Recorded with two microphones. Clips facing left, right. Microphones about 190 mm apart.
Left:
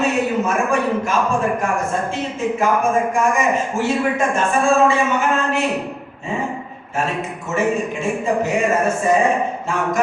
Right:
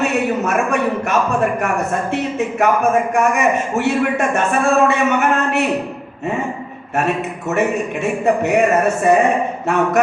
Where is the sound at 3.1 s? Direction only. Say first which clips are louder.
Right 2 dB; 65° right (ahead or behind).